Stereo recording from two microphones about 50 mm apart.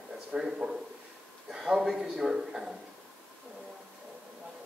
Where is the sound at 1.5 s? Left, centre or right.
Centre.